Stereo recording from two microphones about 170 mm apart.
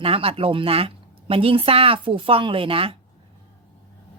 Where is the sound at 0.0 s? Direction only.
35° right (ahead or behind).